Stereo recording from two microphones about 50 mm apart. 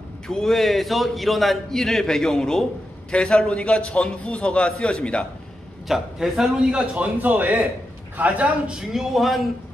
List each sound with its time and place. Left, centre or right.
0.3 s a man's voice: centre
5.9 s a man's voice: centre
7.0 s a man's voice: right
8.2 s a man's voice: right
8.7 s a man's voice: centre